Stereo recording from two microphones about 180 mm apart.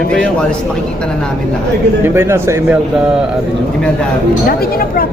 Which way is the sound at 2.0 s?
15° right (ahead or behind).